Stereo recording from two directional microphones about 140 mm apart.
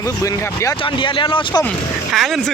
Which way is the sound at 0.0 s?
25° left (ahead or behind).